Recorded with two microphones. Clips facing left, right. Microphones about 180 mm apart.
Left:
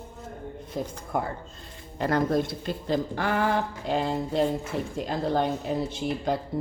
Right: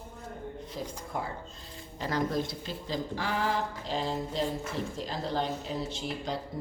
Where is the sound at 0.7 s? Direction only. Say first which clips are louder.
Left 8 dB; 55° left (ahead or behind).